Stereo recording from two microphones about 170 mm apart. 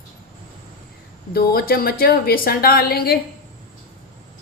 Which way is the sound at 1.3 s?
65° left (ahead or behind).